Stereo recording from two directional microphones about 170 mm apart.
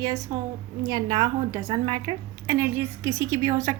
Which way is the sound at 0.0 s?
20° right (ahead or behind).